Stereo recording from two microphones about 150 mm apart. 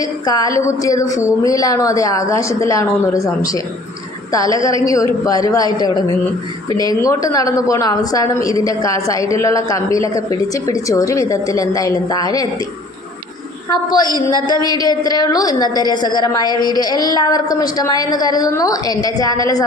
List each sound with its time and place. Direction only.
0.0 s a woman's voice: 25° left (ahead or behind)
4.3 s a woman's voice: 25° left (ahead or behind)
13.7 s a woman's voice: 25° left (ahead or behind)